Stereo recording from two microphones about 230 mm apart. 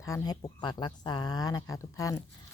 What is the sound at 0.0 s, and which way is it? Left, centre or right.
Speech, centre.